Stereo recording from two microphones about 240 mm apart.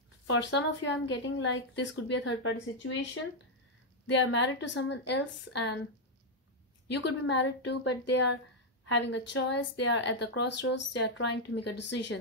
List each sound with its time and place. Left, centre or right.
0.3 s speech: left
4.1 s speech: left
6.9 s speech: left